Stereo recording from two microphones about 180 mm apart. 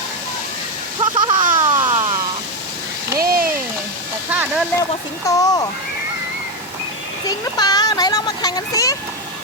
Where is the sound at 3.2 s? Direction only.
55° right (ahead or behind).